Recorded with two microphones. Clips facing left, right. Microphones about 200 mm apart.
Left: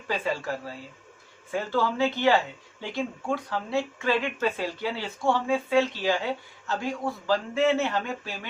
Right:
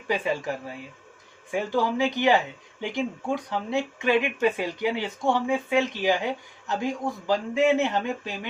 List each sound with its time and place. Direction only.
0.1 s speech: 15° right (ahead or behind)